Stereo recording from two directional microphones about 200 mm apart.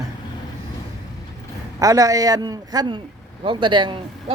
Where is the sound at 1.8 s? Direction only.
15° right (ahead or behind).